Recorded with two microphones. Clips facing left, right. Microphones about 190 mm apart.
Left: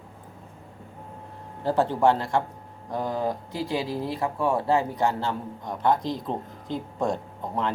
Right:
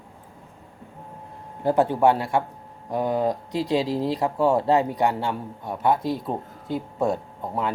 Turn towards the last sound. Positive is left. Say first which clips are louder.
# right 1 dB
turn(degrees=-5)  # may be behind; listen again after turning